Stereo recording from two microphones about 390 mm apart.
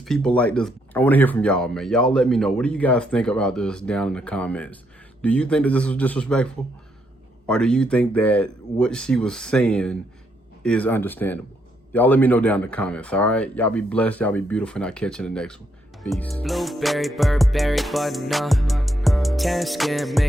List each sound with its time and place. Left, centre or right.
0.0 s speech: centre